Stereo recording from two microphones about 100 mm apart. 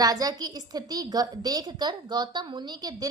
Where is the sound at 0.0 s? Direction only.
40° right (ahead or behind).